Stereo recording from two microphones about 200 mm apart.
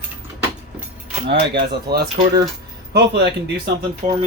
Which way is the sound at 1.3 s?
55° right (ahead or behind).